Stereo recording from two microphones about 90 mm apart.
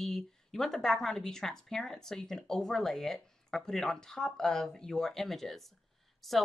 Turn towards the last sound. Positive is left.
turn(degrees=0)  # may be behind; listen again after turning